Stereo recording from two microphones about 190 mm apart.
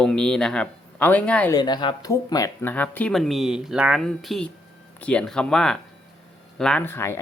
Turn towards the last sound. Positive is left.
turn(degrees=10)  # may be behind; listen again after turning